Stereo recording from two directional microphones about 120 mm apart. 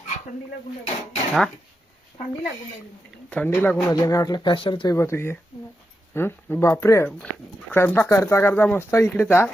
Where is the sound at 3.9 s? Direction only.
30° left (ahead or behind).